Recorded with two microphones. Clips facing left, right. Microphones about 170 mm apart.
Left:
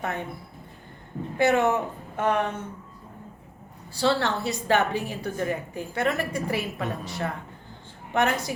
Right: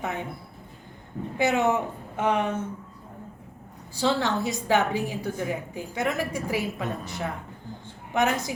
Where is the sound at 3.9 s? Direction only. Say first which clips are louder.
Even; 15° right (ahead or behind).